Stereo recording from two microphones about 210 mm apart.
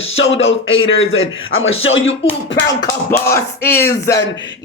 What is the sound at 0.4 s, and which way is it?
Speech, 65° left (ahead or behind).